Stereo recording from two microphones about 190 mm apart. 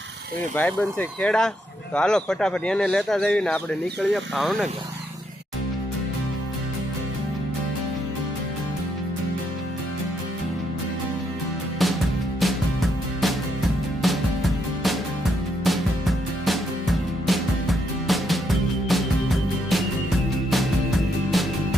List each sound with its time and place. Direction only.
0.5 s speech: 10° left (ahead or behind)
11.8 s music: centre (ahead or behind)
21.2 s music: centre (ahead or behind)